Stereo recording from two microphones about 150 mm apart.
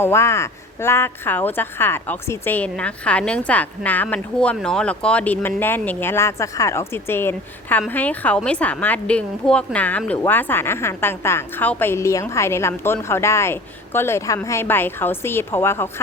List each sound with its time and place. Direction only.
0.0 s a woman's voice: 15° left (ahead or behind)